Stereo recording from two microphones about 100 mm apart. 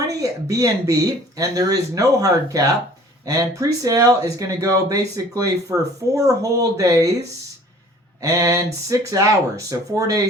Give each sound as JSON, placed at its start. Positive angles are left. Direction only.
{"t": 0.2, "sound": "speech", "side_deg": -35}
{"t": 8.2, "sound": "speech", "side_deg": -35}